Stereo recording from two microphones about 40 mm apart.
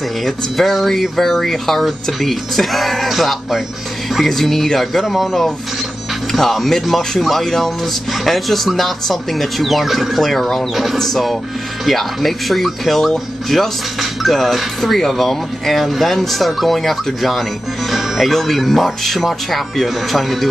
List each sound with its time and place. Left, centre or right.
0.2 s speech: centre
4.3 s speech: centre
6.5 s speech: centre